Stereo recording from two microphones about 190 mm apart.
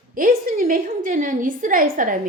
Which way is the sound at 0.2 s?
50° right (ahead or behind).